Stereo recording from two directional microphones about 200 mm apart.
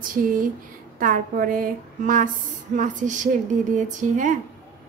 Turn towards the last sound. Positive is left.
turn(degrees=-40)  # may be behind; listen again after turning